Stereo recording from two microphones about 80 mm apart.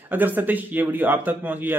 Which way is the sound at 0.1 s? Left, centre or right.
Right.